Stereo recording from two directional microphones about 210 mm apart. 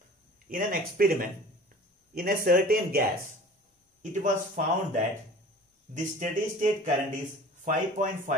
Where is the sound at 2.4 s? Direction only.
45° right (ahead or behind).